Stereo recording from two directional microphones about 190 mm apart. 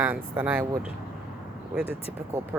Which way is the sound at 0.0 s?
10° right (ahead or behind).